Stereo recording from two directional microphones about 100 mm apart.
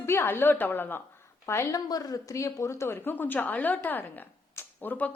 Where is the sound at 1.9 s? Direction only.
40° left (ahead or behind).